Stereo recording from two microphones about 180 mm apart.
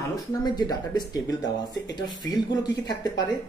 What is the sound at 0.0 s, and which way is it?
Speech, 20° left (ahead or behind).